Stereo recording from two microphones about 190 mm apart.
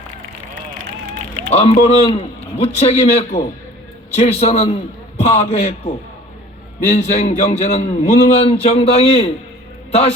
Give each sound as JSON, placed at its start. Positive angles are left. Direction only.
{"t": 1.5, "sound": "a man's voice", "side_deg": 35}